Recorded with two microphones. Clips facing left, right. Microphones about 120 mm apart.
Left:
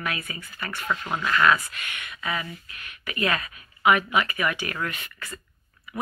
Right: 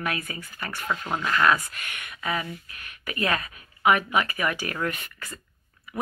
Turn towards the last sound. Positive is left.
turn(degrees=-40)  # may be behind; listen again after turning